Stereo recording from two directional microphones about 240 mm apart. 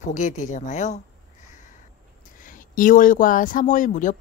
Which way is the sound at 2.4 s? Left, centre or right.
Left.